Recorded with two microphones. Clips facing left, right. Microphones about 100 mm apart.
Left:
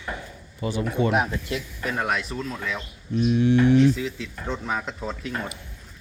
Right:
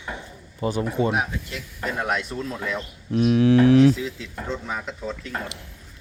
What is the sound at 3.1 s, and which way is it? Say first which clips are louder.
Speech: right 3 dB; 90° right.